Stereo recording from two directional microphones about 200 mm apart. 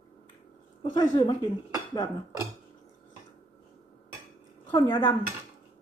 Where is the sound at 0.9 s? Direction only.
20° left (ahead or behind).